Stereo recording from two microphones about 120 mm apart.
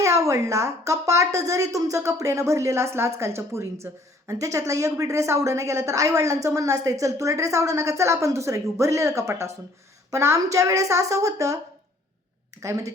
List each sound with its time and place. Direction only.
0.0 s a woman's voice: 25° right (ahead or behind)